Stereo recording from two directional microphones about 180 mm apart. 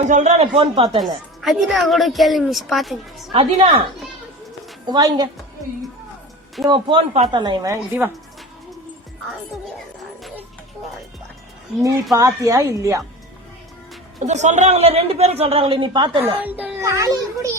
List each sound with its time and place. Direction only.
0.1 s a woman's voice: 40° right (ahead or behind)
0.9 s a woman's voice: centre (ahead or behind)
3.3 s speech: 30° right (ahead or behind)
4.9 s speech: 20° right (ahead or behind)
6.7 s speech: 30° right (ahead or behind); by 8.1 s 15° right (ahead or behind)
12.1 s a child's voice: 20° right (ahead or behind)
14.3 s a woman's voice: 40° right (ahead or behind); by 16.2 s 25° right (ahead or behind)
16.2 s a child's voice: 10° right (ahead or behind)